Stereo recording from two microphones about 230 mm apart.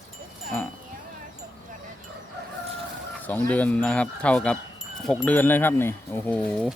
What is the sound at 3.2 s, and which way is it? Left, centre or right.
Speech, centre.